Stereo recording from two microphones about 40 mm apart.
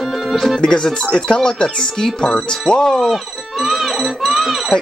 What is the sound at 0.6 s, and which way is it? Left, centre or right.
Speech, centre.